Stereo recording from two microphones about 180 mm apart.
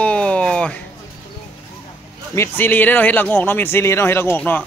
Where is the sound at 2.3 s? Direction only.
10° left (ahead or behind).